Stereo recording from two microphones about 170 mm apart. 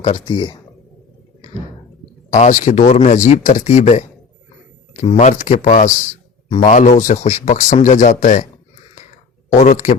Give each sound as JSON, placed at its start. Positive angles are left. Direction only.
{"t": 0.0, "sound": "speech", "side_deg": 30}
{"t": 2.3, "sound": "a man's voice", "side_deg": 45}
{"t": 5.1, "sound": "a man's voice", "side_deg": 45}
{"t": 9.5, "sound": "a man's voice", "side_deg": 50}